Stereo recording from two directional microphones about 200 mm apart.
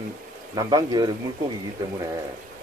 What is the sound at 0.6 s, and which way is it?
Speech, 20° right (ahead or behind).